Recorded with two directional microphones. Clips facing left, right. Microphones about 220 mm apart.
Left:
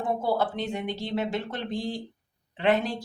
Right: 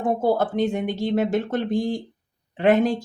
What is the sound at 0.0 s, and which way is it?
Speech, 45° right (ahead or behind).